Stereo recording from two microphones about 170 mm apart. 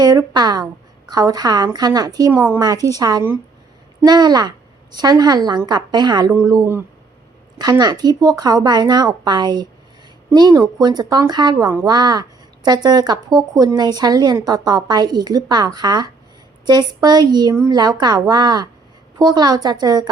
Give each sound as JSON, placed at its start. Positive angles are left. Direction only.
{"t": 0.0, "sound": "a woman's voice", "side_deg": -20}